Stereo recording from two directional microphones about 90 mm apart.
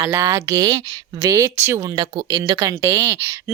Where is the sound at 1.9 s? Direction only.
55° right (ahead or behind).